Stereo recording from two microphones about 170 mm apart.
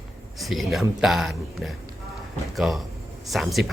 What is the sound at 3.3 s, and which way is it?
Speech, centre (ahead or behind).